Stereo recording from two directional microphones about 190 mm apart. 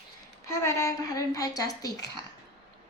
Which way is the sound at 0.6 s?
15° left (ahead or behind).